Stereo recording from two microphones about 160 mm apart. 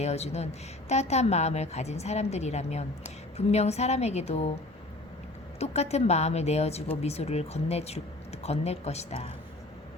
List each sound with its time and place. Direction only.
0.0 s a woman's voice: 40° left (ahead or behind)
5.5 s a woman's voice: 40° left (ahead or behind)